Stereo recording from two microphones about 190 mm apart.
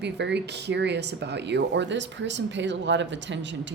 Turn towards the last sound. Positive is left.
turn(degrees=-70)  # may be behind; listen again after turning